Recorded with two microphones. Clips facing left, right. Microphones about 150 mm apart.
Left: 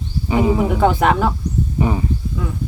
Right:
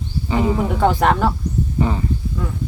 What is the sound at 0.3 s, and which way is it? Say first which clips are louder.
Speech: left 3 dB; 10° left (ahead or behind).